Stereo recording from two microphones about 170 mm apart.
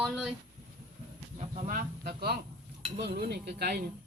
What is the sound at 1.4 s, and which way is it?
Speech, 50° right (ahead or behind).